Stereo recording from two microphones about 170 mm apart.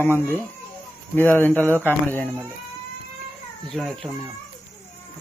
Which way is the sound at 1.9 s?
10° left (ahead or behind).